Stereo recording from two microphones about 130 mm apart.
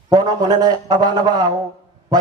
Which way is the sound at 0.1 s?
30° right (ahead or behind).